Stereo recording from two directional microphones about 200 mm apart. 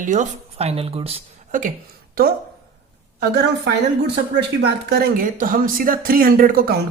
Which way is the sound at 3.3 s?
55° right (ahead or behind).